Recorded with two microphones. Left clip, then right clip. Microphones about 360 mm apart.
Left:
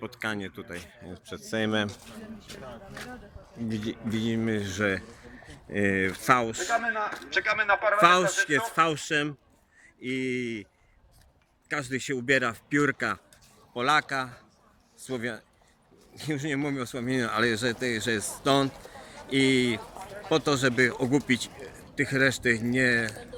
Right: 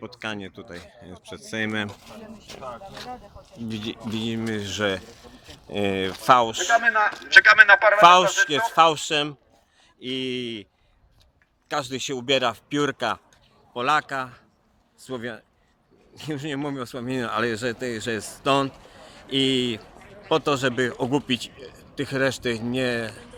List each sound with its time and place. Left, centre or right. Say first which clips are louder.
0.0 s speech: even; centre
3.7 s speech: right 2 dB; centre
6.7 s a man's voice: right 9 dB; right
8.0 s speech: right 7 dB; centre
11.7 s speech: right 3 dB; centre